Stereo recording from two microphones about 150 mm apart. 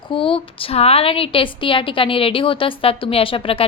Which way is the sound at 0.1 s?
35° left (ahead or behind).